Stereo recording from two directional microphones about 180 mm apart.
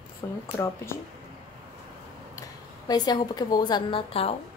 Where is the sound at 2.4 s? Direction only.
20° left (ahead or behind).